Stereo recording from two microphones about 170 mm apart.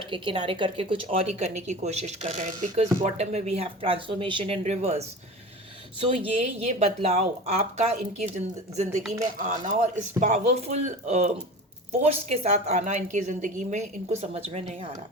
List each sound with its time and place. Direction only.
0.1 s speech: 30° right (ahead or behind)
6.7 s a woman's voice: 40° right (ahead or behind)